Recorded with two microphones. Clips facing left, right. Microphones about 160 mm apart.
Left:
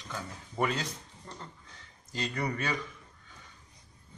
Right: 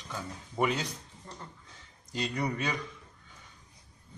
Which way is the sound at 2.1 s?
15° right (ahead or behind).